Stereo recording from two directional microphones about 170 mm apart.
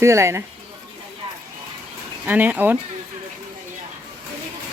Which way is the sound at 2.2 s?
10° right (ahead or behind).